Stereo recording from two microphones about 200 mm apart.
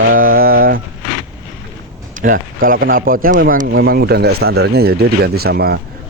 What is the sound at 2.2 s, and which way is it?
A man's voice, 45° right (ahead or behind).